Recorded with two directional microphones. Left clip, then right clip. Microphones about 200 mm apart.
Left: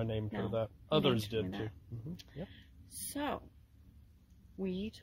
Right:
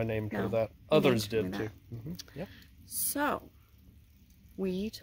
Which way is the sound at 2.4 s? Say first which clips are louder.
Right 6 dB; 10° right (ahead or behind).